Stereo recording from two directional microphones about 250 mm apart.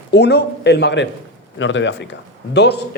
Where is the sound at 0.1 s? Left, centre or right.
Left.